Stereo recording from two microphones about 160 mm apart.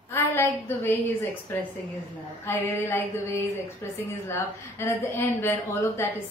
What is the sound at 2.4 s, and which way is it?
Speech, 15° left (ahead or behind).